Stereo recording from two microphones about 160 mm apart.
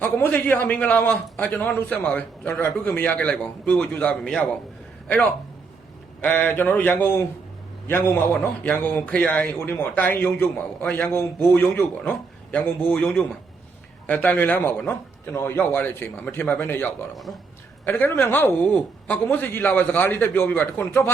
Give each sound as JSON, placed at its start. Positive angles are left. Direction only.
{"t": 0.0, "sound": "a man's voice", "side_deg": 10}